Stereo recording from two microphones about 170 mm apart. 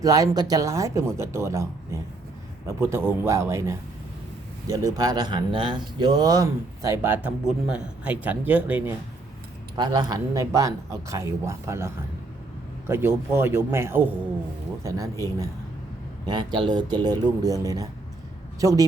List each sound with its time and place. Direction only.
0.0 s speech: 20° right (ahead or behind)
9.7 s speech: 25° right (ahead or behind)
12.9 s speech: 15° right (ahead or behind)
16.2 s speech: 25° right (ahead or behind)